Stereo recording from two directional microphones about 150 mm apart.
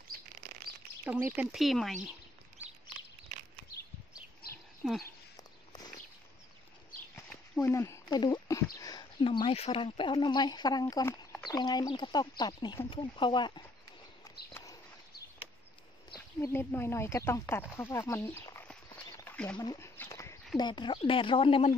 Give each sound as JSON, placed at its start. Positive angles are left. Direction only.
{"t": 1.0, "sound": "speech", "side_deg": -10}
{"t": 7.6, "sound": "speech", "side_deg": 20}
{"t": 9.2, "sound": "speech", "side_deg": 35}
{"t": 14.5, "sound": "a sound", "side_deg": 25}
{"t": 16.3, "sound": "speech", "side_deg": 20}
{"t": 19.1, "sound": "a sound", "side_deg": 10}
{"t": 19.5, "sound": "speech", "side_deg": 25}
{"t": 20.0, "sound": "a sound", "side_deg": 20}
{"t": 20.5, "sound": "speech", "side_deg": 30}